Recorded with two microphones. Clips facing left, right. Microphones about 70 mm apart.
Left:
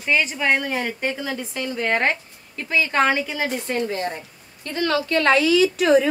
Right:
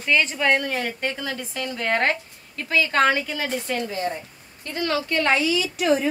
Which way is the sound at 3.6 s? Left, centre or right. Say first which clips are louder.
Left 2 dB; left.